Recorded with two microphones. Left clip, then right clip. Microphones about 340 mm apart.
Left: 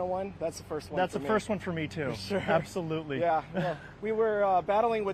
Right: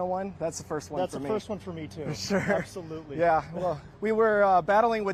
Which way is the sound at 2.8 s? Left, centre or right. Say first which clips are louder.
Left 5 dB; left.